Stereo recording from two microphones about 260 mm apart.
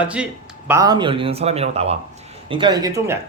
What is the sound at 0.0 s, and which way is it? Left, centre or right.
Speech, centre.